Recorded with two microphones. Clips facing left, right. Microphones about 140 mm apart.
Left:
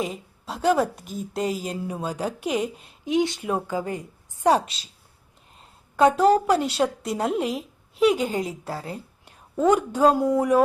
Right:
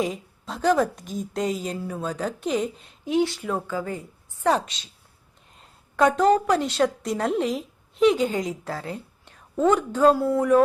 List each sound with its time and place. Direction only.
0.0 s speech: 5° left (ahead or behind)
6.1 s speech: 10° left (ahead or behind)
8.2 s a woman's voice: 35° left (ahead or behind)
9.2 s speech: 10° left (ahead or behind)